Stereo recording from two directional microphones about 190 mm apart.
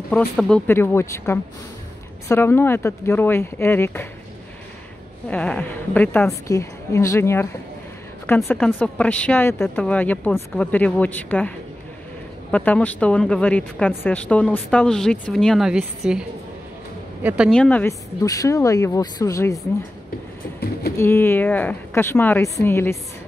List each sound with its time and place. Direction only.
0.4 s speech: 10° left (ahead or behind)
5.3 s speech: 5° left (ahead or behind)
17.6 s speech: 10° left (ahead or behind)
21.0 s speech: 15° left (ahead or behind)